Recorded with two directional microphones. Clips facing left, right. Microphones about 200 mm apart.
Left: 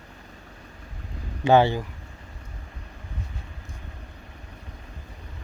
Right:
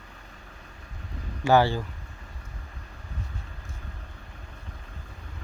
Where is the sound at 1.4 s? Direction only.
20° left (ahead or behind).